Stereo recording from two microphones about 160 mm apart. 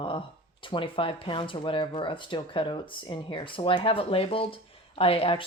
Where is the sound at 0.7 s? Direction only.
35° left (ahead or behind).